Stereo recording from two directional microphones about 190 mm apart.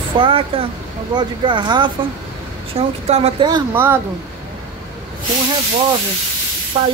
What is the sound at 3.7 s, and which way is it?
Speech, 10° right (ahead or behind).